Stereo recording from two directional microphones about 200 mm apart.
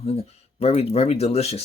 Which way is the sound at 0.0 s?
30° left (ahead or behind).